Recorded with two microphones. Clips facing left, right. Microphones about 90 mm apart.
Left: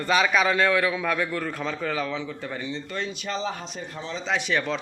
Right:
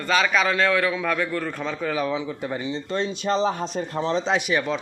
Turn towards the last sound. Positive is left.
turn(degrees=-5)  # may be behind; listen again after turning